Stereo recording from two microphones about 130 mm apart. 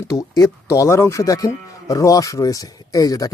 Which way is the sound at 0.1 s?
25° left (ahead or behind).